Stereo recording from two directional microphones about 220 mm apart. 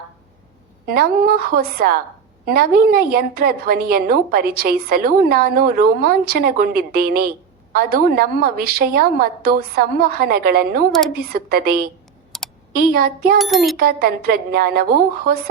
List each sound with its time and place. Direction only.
0.9 s a woman's voice: 45° right (ahead or behind)
12.3 s typing: centre (ahead or behind)
12.7 s a woman's voice: 45° right (ahead or behind)
13.4 s a child's voice: centre (ahead or behind)
13.7 s a woman's voice: 45° right (ahead or behind)